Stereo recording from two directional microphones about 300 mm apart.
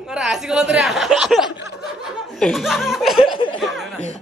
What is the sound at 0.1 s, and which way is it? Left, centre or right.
Speech, centre.